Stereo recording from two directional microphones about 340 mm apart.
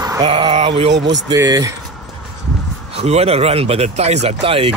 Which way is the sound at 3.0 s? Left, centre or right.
Centre.